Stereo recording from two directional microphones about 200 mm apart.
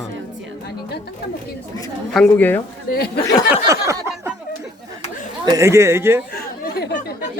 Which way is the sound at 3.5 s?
15° right (ahead or behind).